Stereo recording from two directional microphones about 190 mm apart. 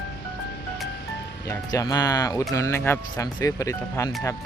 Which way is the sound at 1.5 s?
20° left (ahead or behind).